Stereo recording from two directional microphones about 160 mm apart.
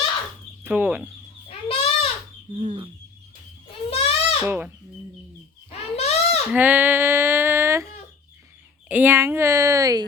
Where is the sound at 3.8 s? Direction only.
35° left (ahead or behind).